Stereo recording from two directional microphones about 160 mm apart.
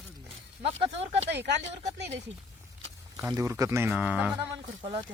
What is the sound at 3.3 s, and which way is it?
Speech, 20° right (ahead or behind).